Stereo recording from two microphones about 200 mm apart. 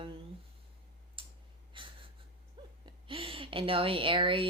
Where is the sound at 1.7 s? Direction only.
25° right (ahead or behind).